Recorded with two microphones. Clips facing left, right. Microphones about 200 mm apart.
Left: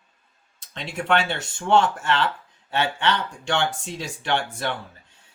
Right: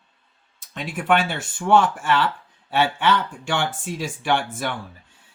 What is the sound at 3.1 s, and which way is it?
Speech, 5° right (ahead or behind).